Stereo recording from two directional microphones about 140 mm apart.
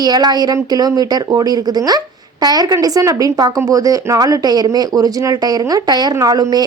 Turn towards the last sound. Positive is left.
turn(degrees=-25)  # may be behind; listen again after turning